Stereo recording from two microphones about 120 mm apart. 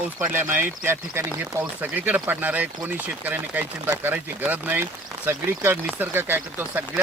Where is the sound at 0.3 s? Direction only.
20° right (ahead or behind).